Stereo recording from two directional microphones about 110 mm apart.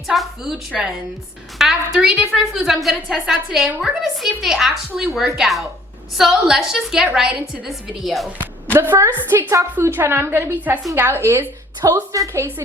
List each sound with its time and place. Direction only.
0.1 s a woman's voice: 5° right (ahead or behind)
8.7 s a woman's voice: 20° right (ahead or behind)
11.8 s a woman's voice: 35° right (ahead or behind)